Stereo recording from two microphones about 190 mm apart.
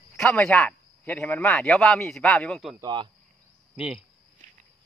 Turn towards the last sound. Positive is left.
turn(degrees=-5)  # may be behind; listen again after turning